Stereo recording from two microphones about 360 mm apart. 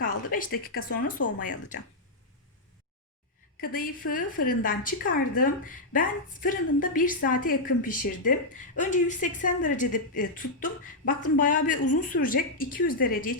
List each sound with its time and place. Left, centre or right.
0.3 s speech: left
3.6 s speech: left